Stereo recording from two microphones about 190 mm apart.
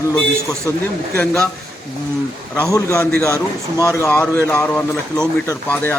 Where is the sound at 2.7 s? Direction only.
15° left (ahead or behind).